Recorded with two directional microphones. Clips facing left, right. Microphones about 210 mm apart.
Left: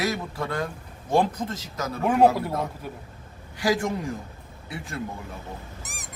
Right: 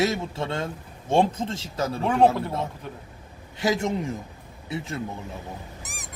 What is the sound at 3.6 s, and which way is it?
Speech, 25° right (ahead or behind).